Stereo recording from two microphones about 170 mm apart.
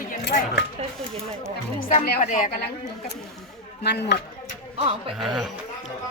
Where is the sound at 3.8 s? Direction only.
80° left.